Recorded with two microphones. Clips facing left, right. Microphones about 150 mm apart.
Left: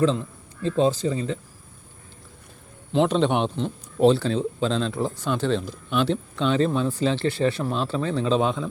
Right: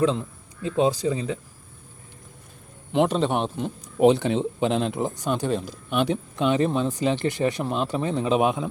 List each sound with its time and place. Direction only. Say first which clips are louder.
0.6 s speech: left 1 dB; 15° right (ahead or behind)
2.9 s speech: left 1 dB; 10° right (ahead or behind)